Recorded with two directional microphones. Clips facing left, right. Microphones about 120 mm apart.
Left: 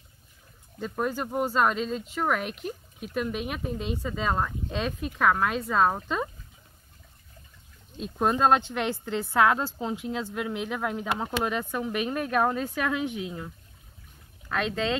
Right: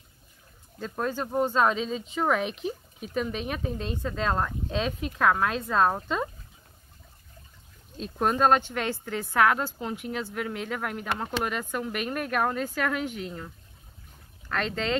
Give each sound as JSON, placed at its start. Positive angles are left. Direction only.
{"t": 0.7, "sound": "speech", "side_deg": 5}
{"t": 8.0, "sound": "speech", "side_deg": 10}
{"t": 11.0, "sound": "speech", "side_deg": 5}
{"t": 12.2, "sound": "speech", "side_deg": 20}
{"t": 14.5, "sound": "speech", "side_deg": 5}